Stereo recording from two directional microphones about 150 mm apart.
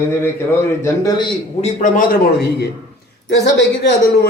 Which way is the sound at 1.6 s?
65° left (ahead or behind).